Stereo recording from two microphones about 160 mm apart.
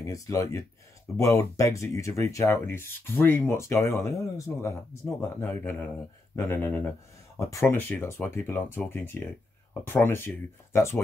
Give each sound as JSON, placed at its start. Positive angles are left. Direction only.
{"t": 0.0, "sound": "speech", "side_deg": 20}